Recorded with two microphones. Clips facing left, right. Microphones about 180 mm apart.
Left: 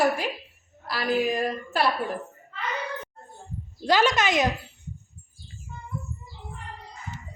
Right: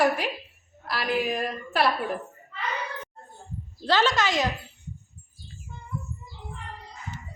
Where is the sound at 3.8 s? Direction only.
15° left (ahead or behind).